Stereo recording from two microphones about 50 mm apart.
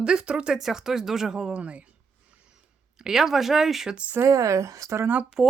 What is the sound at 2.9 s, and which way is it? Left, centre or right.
Speech, centre.